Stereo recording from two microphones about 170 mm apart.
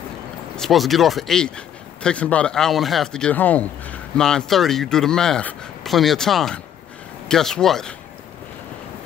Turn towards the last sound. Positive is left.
turn(degrees=0)  # may be behind; listen again after turning